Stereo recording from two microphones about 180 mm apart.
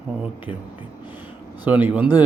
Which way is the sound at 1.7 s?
10° right (ahead or behind).